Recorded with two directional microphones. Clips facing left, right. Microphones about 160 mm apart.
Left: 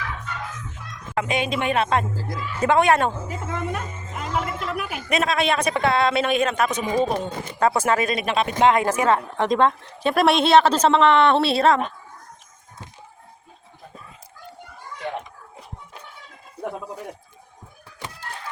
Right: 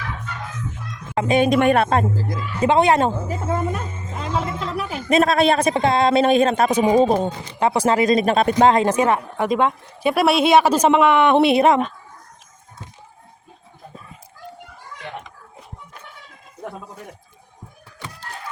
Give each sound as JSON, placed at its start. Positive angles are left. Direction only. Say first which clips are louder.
{"t": 1.1, "sound": "speech", "louder": "right 5 dB", "side_deg": -35}
{"t": 1.4, "sound": "speech", "louder": "right 9 dB", "side_deg": -50}
{"t": 2.3, "sound": "a woman's voice", "louder": "right 1 dB", "side_deg": -20}
{"t": 5.2, "sound": "a sound", "louder": "right 5 dB", "side_deg": -35}
{"t": 7.3, "sound": "speech", "louder": "right 1 dB", "side_deg": -20}
{"t": 7.8, "sound": "a sound", "louder": "right 5 dB", "side_deg": -30}
{"t": 8.8, "sound": "a woman's voice", "louder": "right 2 dB", "side_deg": -20}